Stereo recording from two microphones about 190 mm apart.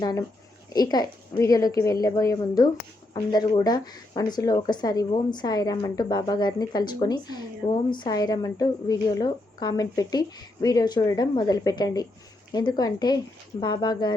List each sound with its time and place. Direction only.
0.0 s speech: 20° left (ahead or behind)